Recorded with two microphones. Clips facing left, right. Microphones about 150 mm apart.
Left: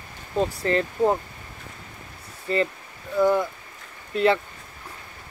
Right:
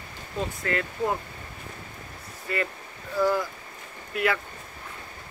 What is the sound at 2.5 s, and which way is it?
Speech, 30° left (ahead or behind).